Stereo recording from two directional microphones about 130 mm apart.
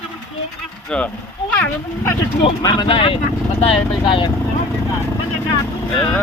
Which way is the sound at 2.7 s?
45° left (ahead or behind).